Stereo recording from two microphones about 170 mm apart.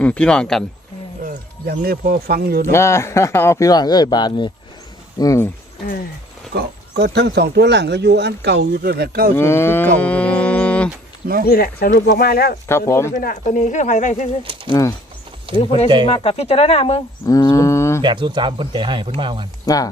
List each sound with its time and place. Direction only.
0.0 s speech: 10° left (ahead or behind)
1.2 s speech: 50° right (ahead or behind)
2.7 s speech: 15° left (ahead or behind)
6.5 s speech: 70° right (ahead or behind)
9.3 s speech: 15° left (ahead or behind)
11.4 s speech: 65° left (ahead or behind)
12.6 s speech: 15° left (ahead or behind)
13.1 s speech: 45° left (ahead or behind)
14.7 s speech: 20° left (ahead or behind)
15.5 s speech: 40° left (ahead or behind)
17.2 s speech: 20° left (ahead or behind)
18.0 s speech: 25° right (ahead or behind)
19.6 s speech: 20° left (ahead or behind)